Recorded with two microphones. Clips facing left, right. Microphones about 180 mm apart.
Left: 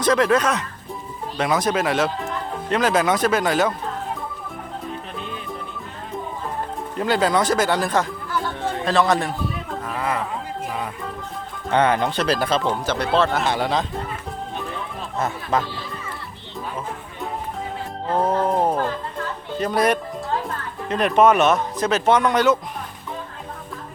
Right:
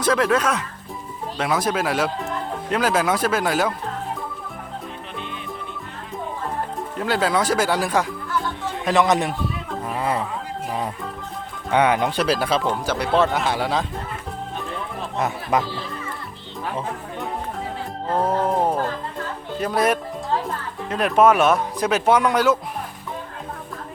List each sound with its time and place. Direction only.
0.0 s speech: 5° right (ahead or behind)
7.0 s speech: centre (ahead or behind); by 9.3 s 20° right (ahead or behind)
9.8 s music: 25° right (ahead or behind)
11.7 s speech: 10° right (ahead or behind)
15.2 s speech: 15° right (ahead or behind)
18.1 s speech: centre (ahead or behind)